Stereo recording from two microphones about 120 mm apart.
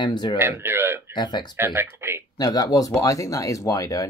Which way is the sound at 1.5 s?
15° right (ahead or behind).